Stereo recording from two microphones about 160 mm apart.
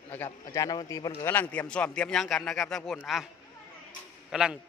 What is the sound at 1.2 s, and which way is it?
A man's voice, 10° left (ahead or behind).